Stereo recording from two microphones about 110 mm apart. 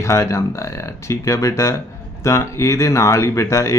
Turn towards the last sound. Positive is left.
turn(degrees=25)  # may be behind; listen again after turning